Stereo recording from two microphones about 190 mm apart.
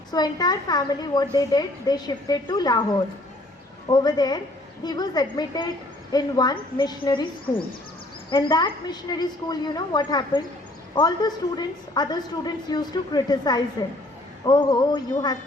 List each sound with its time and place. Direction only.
0.1 s a woman's voice: 20° left (ahead or behind)
3.8 s a woman's voice: 20° left (ahead or behind)
8.3 s a woman's voice: 25° left (ahead or behind)